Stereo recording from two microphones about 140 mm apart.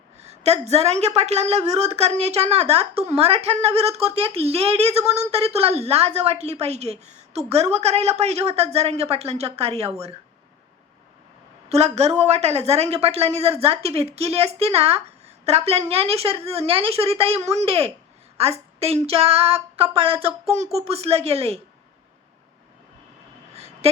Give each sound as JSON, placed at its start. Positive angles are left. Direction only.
{"t": 0.2, "sound": "a woman's voice", "side_deg": -50}
{"t": 11.7, "sound": "a woman's voice", "side_deg": -50}
{"t": 23.6, "sound": "a sound", "side_deg": -50}